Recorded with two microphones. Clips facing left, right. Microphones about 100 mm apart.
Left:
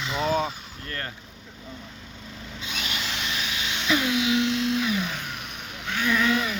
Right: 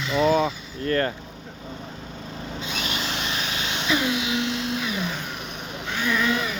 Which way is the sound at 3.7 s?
20° right (ahead or behind).